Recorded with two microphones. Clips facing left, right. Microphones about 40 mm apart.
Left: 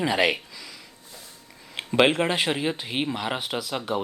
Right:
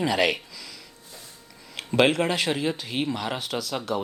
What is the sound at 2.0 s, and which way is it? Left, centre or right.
Speech, left.